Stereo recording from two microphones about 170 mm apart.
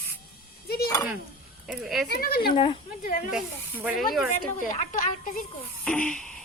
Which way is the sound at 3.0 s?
55° left (ahead or behind).